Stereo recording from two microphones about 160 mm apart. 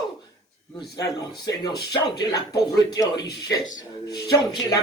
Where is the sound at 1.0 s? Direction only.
25° left (ahead or behind).